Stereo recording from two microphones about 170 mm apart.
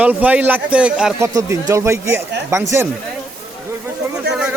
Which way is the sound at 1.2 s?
20° right (ahead or behind).